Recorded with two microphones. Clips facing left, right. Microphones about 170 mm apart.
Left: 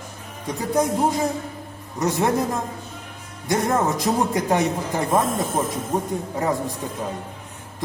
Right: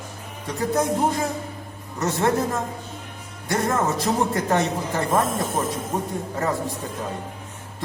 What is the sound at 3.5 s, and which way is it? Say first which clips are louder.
Speech: left 2 dB; 15° left (ahead or behind).